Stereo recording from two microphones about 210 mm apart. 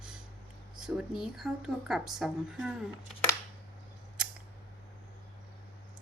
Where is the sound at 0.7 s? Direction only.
Centre (ahead or behind).